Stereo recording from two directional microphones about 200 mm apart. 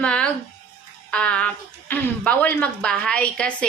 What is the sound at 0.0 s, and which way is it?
A woman's voice, 5° left (ahead or behind).